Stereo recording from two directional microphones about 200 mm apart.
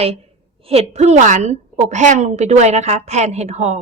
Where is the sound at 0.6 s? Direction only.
30° right (ahead or behind).